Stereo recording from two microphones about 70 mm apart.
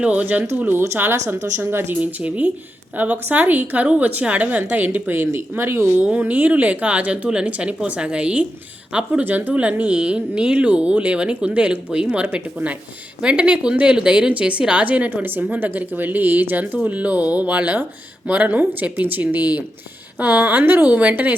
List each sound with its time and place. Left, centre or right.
0.0 s a woman's voice: centre; by 2.0 s right
2.0 s a woman's voice: right
6.0 s a woman's voice: right
9.2 s a woman's voice: right